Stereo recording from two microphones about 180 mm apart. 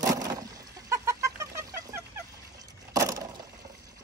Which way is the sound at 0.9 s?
15° right (ahead or behind).